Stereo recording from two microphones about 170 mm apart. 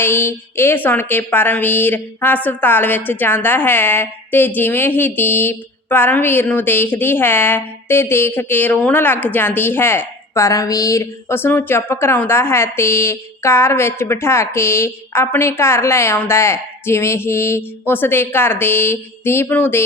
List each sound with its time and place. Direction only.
0.0 s a woman's voice: 15° left (ahead or behind)